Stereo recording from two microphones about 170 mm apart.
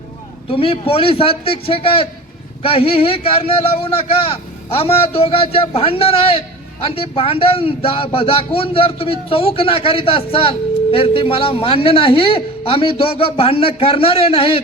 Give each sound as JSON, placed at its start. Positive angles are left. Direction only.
{"t": 0.5, "sound": "speech", "side_deg": 35}